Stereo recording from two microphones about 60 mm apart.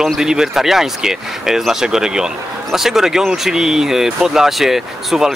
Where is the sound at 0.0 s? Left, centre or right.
Centre.